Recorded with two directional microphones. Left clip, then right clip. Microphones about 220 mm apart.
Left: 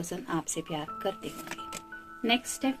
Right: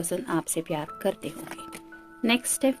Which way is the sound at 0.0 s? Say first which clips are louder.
Right 5 dB; 45° right (ahead or behind).